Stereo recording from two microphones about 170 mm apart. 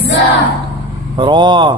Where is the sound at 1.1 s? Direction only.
25° right (ahead or behind).